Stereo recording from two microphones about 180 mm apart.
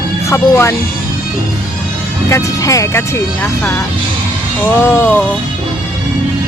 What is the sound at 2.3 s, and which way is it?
Speech, 20° left (ahead or behind).